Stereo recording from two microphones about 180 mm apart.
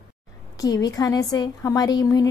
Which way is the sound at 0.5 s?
20° left (ahead or behind).